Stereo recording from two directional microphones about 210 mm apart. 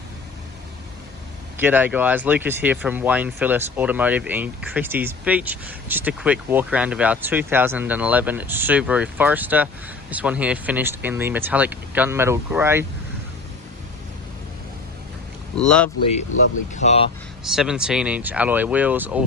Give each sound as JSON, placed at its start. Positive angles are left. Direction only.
{"t": 1.5, "sound": "speech", "side_deg": -10}
{"t": 15.5, "sound": "speech", "side_deg": 5}
{"t": 16.7, "sound": "speech", "side_deg": 30}
{"t": 17.4, "sound": "speech", "side_deg": 0}